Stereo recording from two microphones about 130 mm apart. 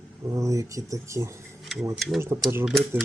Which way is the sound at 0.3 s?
25° right (ahead or behind).